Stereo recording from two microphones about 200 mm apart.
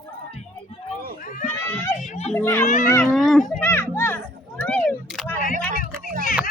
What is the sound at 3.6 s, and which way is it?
Children playing, 10° left (ahead or behind).